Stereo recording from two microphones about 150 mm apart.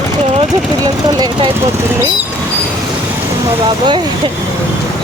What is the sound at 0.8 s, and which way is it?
Speech, 25° right (ahead or behind).